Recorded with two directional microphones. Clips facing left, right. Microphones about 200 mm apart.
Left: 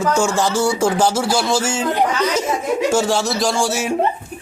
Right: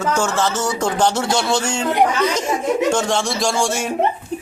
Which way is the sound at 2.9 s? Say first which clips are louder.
Left 2 dB; 5° left (ahead or behind).